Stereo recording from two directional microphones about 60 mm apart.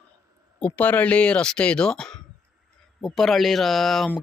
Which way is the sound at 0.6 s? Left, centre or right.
Left.